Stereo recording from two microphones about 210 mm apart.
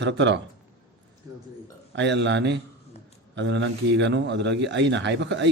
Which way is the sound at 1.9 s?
55° right (ahead or behind).